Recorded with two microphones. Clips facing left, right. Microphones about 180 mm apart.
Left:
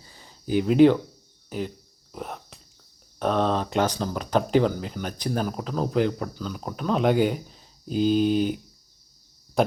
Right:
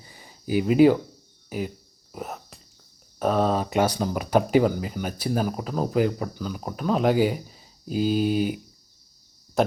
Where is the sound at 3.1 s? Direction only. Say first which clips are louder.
Right 1 dB; 5° right (ahead or behind).